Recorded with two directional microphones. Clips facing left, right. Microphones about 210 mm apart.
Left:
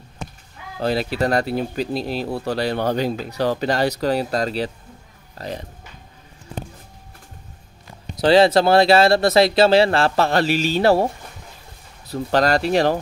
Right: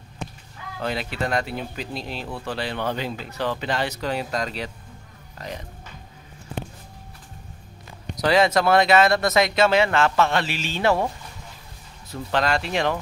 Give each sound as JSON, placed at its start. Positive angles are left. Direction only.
{"t": 0.7, "sound": "speech", "side_deg": 35}
{"t": 8.2, "sound": "speech", "side_deg": 30}
{"t": 12.1, "sound": "speech", "side_deg": 40}